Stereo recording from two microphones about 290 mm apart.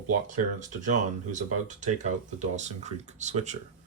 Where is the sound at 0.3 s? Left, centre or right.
Right.